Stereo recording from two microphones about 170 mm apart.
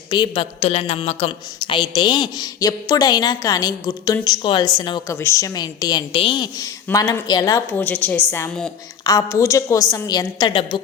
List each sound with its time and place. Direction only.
0.1 s speech: 25° left (ahead or behind)
0.6 s a woman's voice: 40° left (ahead or behind); by 8.7 s 10° left (ahead or behind)
9.0 s speech: 20° left (ahead or behind)